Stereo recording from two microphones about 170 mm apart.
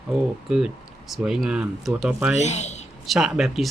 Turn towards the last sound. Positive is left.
turn(degrees=0)  # may be behind; listen again after turning